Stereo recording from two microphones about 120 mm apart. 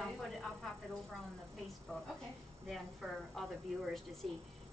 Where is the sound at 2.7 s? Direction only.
Centre (ahead or behind).